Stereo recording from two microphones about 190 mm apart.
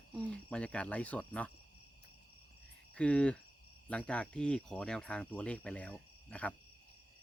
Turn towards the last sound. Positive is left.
turn(degrees=5)  # may be behind; listen again after turning